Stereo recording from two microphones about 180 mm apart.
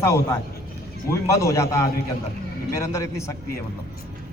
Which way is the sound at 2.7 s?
15° left (ahead or behind).